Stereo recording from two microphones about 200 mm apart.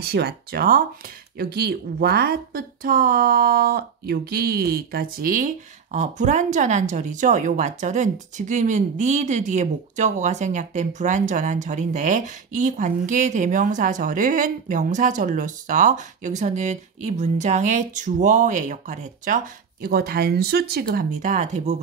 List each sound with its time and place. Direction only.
0.0 s speech: 55° right (ahead or behind); by 21.7 s 35° right (ahead or behind)